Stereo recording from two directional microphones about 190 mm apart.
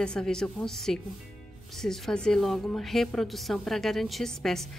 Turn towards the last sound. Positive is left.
turn(degrees=0)  # may be behind; listen again after turning